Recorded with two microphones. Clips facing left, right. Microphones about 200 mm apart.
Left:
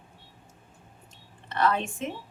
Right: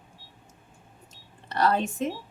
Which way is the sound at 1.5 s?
40° right (ahead or behind).